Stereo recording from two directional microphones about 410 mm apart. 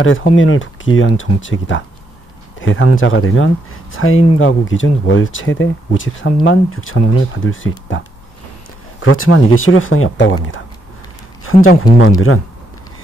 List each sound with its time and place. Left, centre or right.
0.0 s speech: left
9.0 s speech: left